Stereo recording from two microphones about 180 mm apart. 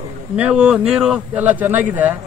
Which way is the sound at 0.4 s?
5° right (ahead or behind).